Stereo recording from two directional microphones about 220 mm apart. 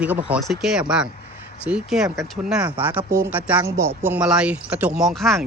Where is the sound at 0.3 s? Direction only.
Centre (ahead or behind).